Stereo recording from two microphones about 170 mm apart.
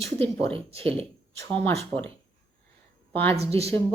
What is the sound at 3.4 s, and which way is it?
Speech, 35° right (ahead or behind).